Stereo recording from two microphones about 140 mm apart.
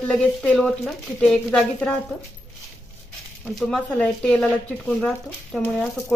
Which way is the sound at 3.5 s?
5° left (ahead or behind).